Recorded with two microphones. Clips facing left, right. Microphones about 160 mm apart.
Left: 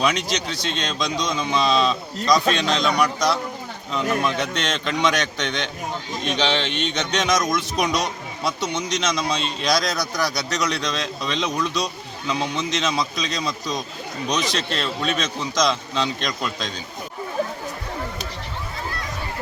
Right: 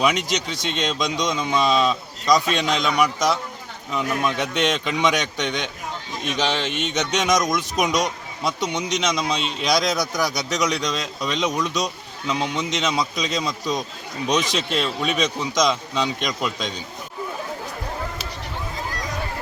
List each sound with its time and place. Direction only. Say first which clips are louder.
0.0 s a man's voice: right 1 dB; 15° right (ahead or behind)
3.9 s a man's voice: left 1 dB; 15° right (ahead or behind)
6.9 s a man's voice: right 2 dB; 15° right (ahead or behind)
11.2 s speech: right 2 dB; centre (ahead or behind)
12.4 s a man's voice: even; 15° right (ahead or behind)